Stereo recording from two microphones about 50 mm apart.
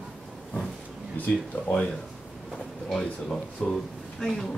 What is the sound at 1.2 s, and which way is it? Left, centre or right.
Speech, left.